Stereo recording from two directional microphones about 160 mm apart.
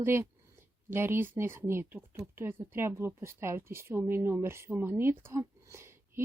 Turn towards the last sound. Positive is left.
turn(degrees=-15)  # may be behind; listen again after turning